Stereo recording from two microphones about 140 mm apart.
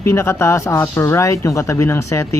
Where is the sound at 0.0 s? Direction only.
20° left (ahead or behind).